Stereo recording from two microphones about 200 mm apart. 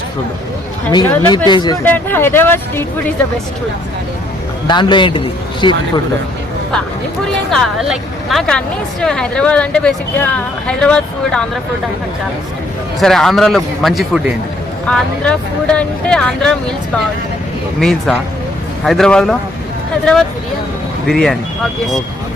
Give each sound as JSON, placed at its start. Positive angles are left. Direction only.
{"t": 0.9, "sound": "speech", "side_deg": 15}
{"t": 1.5, "sound": "a man's voice", "side_deg": 20}
{"t": 1.8, "sound": "speech", "side_deg": 10}
{"t": 4.7, "sound": "a man's voice", "side_deg": 25}
{"t": 7.5, "sound": "speech", "side_deg": 0}
{"t": 13.0, "sound": "speech", "side_deg": 0}
{"t": 17.7, "sound": "speech", "side_deg": 0}
{"t": 21.1, "sound": "speech", "side_deg": 5}